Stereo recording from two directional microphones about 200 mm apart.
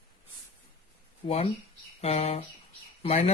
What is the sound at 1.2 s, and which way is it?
Speech, 30° left (ahead or behind).